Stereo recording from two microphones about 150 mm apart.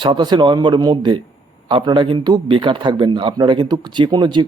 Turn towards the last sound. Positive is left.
turn(degrees=-30)  # may be behind; listen again after turning